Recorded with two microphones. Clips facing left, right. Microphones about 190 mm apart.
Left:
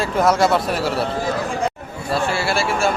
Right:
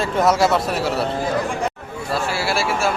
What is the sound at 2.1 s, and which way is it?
Speech, centre (ahead or behind).